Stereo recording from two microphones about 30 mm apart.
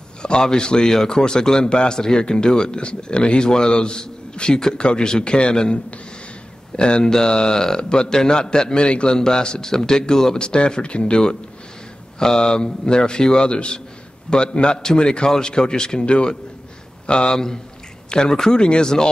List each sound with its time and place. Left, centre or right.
0.2 s a man's voice: left
6.8 s a man's voice: left
9.1 s speech: left
10.4 s a man's voice: left
16.1 s a man's voice: left
17.3 s speech: centre